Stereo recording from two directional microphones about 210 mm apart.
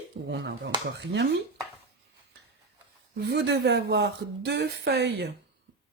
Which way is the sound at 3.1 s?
55° right (ahead or behind).